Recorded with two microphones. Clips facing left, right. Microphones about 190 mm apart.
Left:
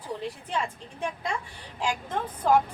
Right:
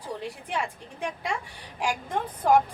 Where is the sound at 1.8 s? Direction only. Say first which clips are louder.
Right 1 dB; 10° right (ahead or behind).